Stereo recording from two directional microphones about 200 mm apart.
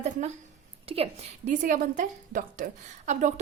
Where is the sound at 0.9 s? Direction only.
30° right (ahead or behind).